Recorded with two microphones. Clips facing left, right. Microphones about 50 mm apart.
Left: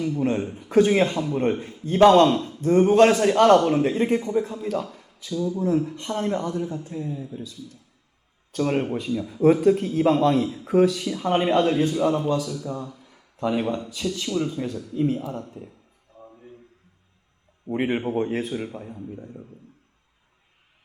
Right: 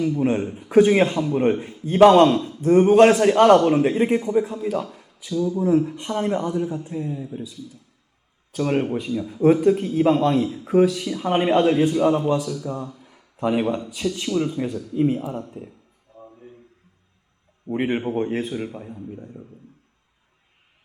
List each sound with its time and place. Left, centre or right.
0.0 s a man's voice: centre
2.3 s speech: centre
2.6 s a man's voice: centre
8.5 s a man's voice: centre
13.1 s a sound: centre
14.3 s a man's voice: centre
16.2 s a sound: centre
17.7 s speech: centre